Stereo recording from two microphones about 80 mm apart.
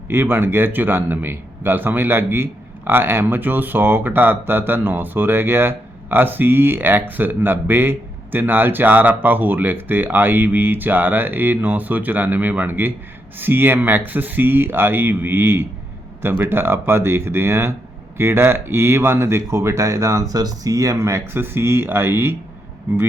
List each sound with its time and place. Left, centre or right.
0.1 s speech: right